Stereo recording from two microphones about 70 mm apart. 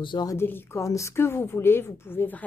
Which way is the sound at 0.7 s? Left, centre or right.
Left.